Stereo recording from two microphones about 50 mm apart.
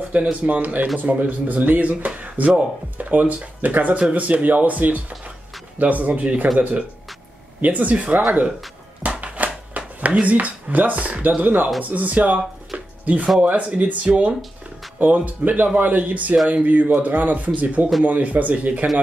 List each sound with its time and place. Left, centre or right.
0.1 s speech: right
7.6 s speech: right
9.2 s a sound: right
10.2 s speech: right